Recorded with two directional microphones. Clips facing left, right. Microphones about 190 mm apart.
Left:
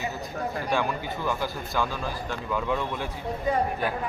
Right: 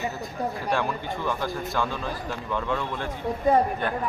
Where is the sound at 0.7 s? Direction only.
Centre (ahead or behind).